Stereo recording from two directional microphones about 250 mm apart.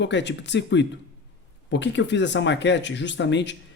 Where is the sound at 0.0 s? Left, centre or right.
Left.